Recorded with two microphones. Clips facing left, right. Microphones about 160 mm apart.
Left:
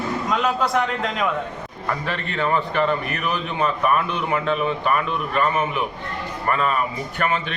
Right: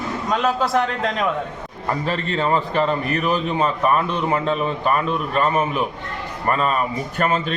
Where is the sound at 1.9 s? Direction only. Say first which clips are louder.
Right 4 dB; 35° right (ahead or behind).